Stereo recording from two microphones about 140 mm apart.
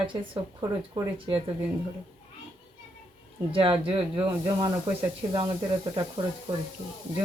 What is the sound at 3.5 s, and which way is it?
Speech, 40° right (ahead or behind).